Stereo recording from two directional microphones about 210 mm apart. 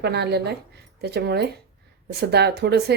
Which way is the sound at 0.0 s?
50° right (ahead or behind).